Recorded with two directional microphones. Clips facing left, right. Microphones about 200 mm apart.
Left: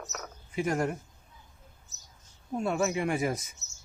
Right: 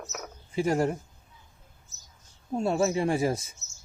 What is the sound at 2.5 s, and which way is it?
Speech, 30° right (ahead or behind).